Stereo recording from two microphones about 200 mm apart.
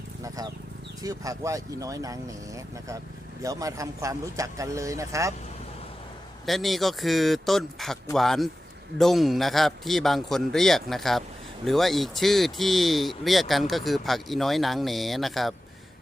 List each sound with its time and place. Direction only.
1.0 s a man's voice: 15° right (ahead or behind)
3.4 s a man's voice: 15° right (ahead or behind)
6.4 s speech: centre (ahead or behind)